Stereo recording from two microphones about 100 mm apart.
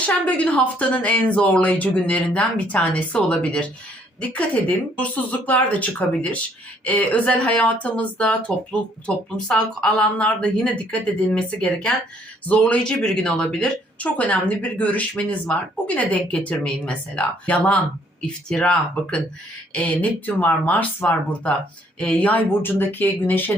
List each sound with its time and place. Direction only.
0.0 s speech: 15° left (ahead or behind)